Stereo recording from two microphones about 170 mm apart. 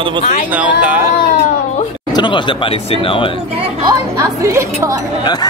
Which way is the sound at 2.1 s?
30° left (ahead or behind).